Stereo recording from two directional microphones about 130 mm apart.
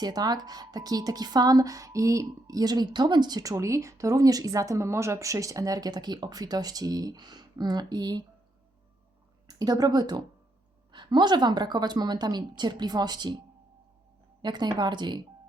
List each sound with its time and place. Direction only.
0.0 s a woman's voice: 30° right (ahead or behind)
9.5 s a woman's voice: 30° right (ahead or behind)
14.4 s a woman's voice: 35° right (ahead or behind)